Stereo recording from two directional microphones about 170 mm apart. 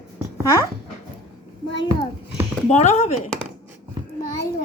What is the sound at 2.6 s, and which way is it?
Speech, 40° left (ahead or behind).